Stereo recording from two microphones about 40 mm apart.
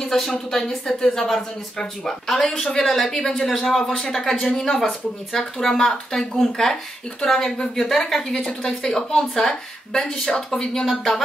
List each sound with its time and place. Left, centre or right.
0.0 s speech: centre
10.9 s speech: centre